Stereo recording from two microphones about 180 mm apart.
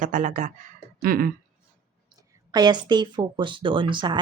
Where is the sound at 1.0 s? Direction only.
50° right (ahead or behind).